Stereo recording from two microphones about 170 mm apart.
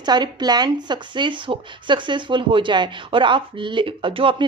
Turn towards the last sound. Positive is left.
turn(degrees=-30)  # may be behind; listen again after turning